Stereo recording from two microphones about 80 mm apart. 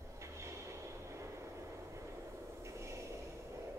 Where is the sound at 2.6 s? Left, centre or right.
Right.